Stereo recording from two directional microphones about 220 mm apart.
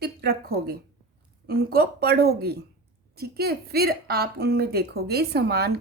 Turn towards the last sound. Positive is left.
turn(degrees=-45)  # may be behind; listen again after turning